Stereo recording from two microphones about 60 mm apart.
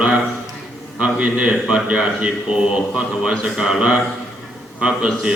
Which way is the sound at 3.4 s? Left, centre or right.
Centre.